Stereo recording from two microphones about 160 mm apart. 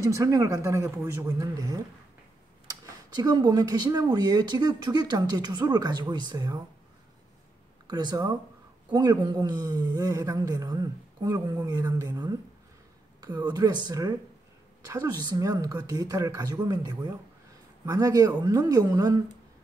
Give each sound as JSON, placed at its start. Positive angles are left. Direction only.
{"t": 0.0, "sound": "speech", "side_deg": -20}
{"t": 3.2, "sound": "speech", "side_deg": -25}
{"t": 7.9, "sound": "speech", "side_deg": -25}